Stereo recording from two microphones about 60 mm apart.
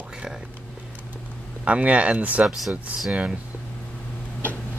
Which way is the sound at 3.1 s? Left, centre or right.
Centre.